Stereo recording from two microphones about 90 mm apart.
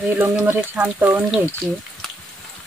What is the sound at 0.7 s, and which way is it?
Speech, 20° right (ahead or behind).